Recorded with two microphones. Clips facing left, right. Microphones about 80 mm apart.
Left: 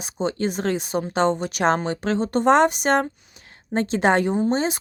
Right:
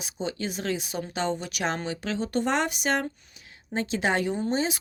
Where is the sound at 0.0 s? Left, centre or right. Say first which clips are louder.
Left 7 dB; left.